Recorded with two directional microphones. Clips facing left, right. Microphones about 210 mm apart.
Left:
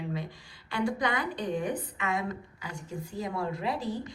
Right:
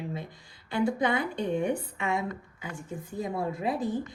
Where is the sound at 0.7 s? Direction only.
25° right (ahead or behind).